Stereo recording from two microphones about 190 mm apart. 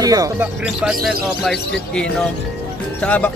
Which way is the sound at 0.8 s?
Centre (ahead or behind).